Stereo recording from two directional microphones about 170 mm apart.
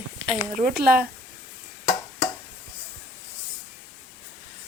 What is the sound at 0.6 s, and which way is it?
Speech, 65° right (ahead or behind).